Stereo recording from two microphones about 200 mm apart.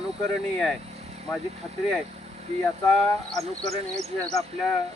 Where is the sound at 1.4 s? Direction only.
30° right (ahead or behind).